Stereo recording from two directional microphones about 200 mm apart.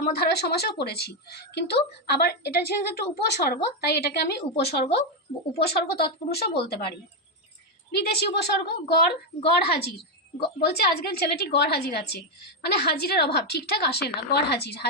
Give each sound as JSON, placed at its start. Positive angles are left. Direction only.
{"t": 0.0, "sound": "a woman's voice", "side_deg": 55}
{"t": 7.9, "sound": "a woman's voice", "side_deg": 55}